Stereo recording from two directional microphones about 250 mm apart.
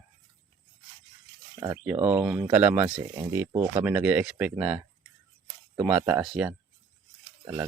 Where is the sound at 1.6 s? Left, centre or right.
Centre.